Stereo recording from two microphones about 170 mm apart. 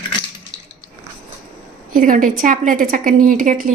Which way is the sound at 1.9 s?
55° right (ahead or behind).